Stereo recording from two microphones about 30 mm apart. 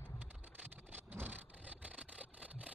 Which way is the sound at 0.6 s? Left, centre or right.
Right.